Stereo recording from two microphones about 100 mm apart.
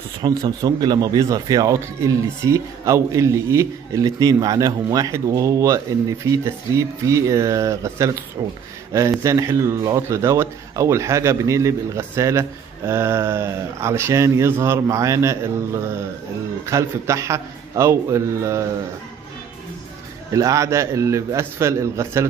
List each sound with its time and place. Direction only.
0.2 s speech: 40° right (ahead or behind)
8.4 s speech: 40° right (ahead or behind)
20.3 s speech: 35° right (ahead or behind)